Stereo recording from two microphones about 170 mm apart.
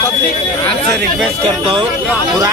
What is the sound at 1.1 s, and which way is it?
Speech, centre (ahead or behind).